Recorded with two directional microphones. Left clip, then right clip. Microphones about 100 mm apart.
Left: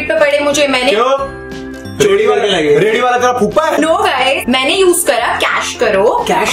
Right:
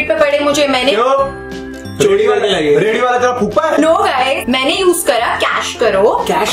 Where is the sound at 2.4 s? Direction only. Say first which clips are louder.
Left 1 dB; 15° right (ahead or behind).